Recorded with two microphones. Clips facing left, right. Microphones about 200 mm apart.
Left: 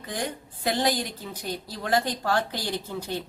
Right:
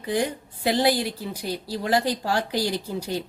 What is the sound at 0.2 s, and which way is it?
A woman's voice, 10° right (ahead or behind).